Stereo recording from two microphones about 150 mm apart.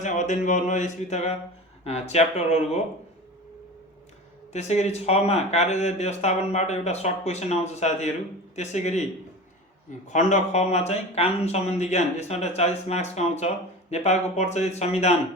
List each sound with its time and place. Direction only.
0.0 s a sound: 55° left (ahead or behind)
1.8 s speech: 45° left (ahead or behind)
4.5 s speech: 50° left (ahead or behind)
10.1 s speech: 55° left (ahead or behind)